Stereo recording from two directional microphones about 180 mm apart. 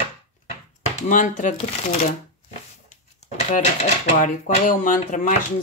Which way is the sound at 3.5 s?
40° left (ahead or behind).